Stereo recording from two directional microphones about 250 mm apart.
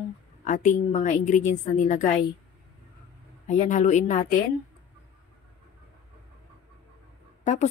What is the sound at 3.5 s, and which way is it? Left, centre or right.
Speech, left.